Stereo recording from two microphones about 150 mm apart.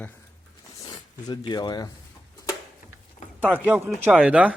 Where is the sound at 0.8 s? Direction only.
30° left (ahead or behind).